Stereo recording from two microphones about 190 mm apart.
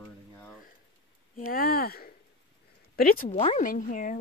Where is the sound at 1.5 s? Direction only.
50° left (ahead or behind).